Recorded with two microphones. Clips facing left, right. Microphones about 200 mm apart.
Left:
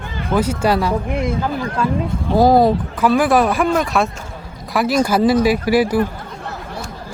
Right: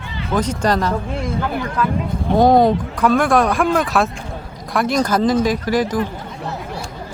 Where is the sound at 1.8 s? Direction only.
30° left (ahead or behind).